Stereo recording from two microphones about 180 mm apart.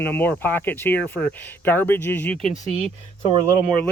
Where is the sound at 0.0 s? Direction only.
10° left (ahead or behind).